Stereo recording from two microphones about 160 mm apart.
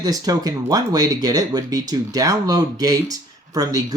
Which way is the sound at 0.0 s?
25° right (ahead or behind).